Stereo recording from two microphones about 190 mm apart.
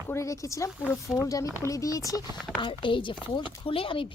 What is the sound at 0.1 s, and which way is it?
A woman's voice, 15° left (ahead or behind).